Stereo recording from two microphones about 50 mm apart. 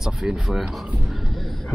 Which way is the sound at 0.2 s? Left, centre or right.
Centre.